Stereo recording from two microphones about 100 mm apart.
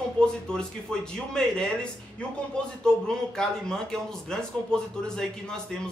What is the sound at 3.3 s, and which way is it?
A man's voice, 5° left (ahead or behind).